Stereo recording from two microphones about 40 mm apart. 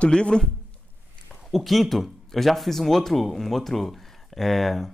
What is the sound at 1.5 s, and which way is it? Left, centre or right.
Speech, centre.